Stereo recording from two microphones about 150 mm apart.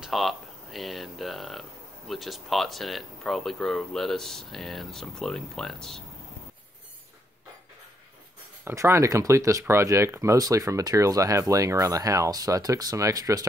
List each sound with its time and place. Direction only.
0.0 s speech: centre (ahead or behind)
8.6 s speech: 15° right (ahead or behind)